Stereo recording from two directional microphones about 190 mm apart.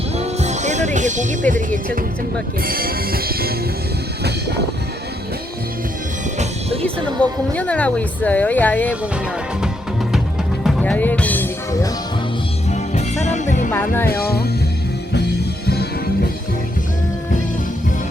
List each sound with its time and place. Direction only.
0.2 s music: 35° right (ahead or behind); by 3.5 s 50° right (ahead or behind)
6.8 s speech: 5° left (ahead or behind)
10.6 s music: 5° left (ahead or behind)
12.9 s music: 35° left (ahead or behind)
13.7 s speech: 10° left (ahead or behind)
14.1 s music: 55° left (ahead or behind)
15.6 s music: 55° left (ahead or behind)